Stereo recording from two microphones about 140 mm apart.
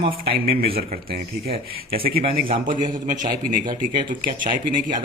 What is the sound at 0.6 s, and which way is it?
A man's voice, 80° right.